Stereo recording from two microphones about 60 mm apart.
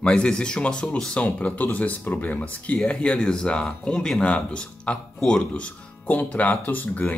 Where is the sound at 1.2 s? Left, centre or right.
Left.